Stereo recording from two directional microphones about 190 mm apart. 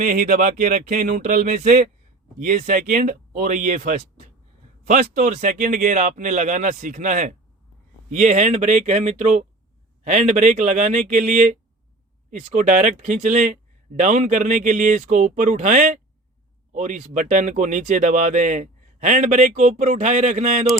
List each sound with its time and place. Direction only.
0.0 s speech: 45° right (ahead or behind)